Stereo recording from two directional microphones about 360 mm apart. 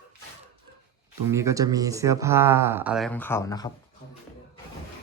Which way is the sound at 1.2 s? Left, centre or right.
Centre.